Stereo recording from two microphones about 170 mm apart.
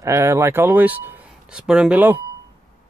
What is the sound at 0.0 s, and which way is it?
Speech, 15° right (ahead or behind).